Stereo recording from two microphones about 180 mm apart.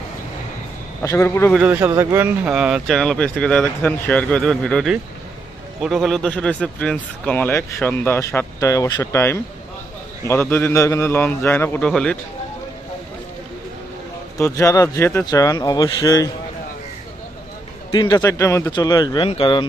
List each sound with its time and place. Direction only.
1.0 s speech: 15° left (ahead or behind)
1.5 s speech: 10° right (ahead or behind)
14.3 s speech: 15° left (ahead or behind)
17.9 s speech: 25° left (ahead or behind)